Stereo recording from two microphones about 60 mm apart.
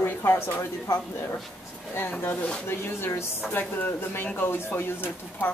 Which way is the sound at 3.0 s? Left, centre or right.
Left.